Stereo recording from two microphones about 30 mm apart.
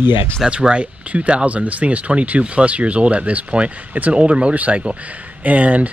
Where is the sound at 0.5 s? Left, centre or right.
Right.